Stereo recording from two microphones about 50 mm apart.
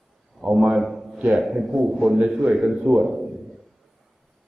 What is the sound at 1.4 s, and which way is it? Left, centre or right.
A man's voice, centre.